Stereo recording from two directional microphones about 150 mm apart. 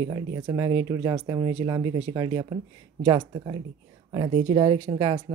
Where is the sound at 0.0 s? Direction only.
25° right (ahead or behind); by 4.9 s 40° right (ahead or behind).